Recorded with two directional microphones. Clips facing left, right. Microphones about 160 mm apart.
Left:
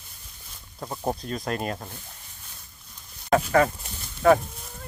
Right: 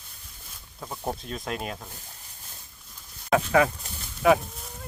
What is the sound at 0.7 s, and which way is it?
Speech, 10° left (ahead or behind).